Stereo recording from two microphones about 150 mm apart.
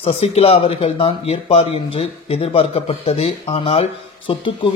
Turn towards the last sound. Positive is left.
turn(degrees=35)  # may be behind; listen again after turning